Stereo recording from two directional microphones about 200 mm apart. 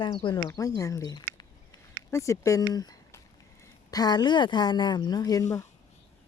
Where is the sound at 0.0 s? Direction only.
25° left (ahead or behind).